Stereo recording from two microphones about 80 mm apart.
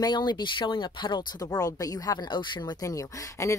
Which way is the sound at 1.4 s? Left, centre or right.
Left.